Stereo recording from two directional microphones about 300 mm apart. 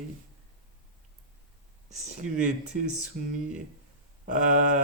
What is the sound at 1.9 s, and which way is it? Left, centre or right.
Speech, right.